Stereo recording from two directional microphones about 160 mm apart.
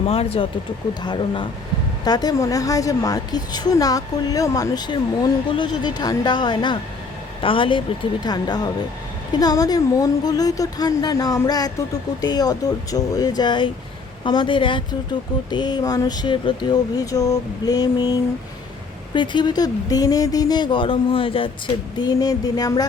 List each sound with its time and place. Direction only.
0.1 s a woman's voice: 35° left (ahead or behind)